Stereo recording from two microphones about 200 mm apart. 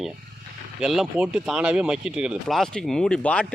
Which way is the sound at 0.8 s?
5° right (ahead or behind).